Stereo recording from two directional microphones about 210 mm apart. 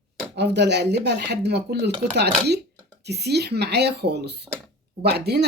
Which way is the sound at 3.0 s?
50° right (ahead or behind).